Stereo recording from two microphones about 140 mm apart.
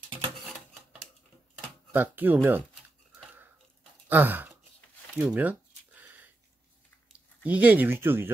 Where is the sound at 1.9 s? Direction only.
15° right (ahead or behind).